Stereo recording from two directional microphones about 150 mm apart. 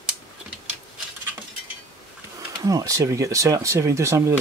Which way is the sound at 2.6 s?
20° right (ahead or behind).